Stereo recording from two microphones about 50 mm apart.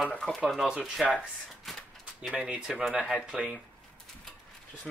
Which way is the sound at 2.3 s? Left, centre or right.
Right.